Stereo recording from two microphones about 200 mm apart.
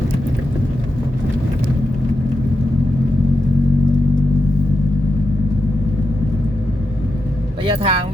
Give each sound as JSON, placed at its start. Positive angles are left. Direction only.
{"t": 7.6, "sound": "speech", "side_deg": -25}